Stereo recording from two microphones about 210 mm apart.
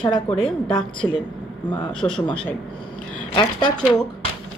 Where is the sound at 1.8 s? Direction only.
5° left (ahead or behind).